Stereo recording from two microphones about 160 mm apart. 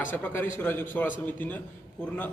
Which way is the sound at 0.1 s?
10° left (ahead or behind).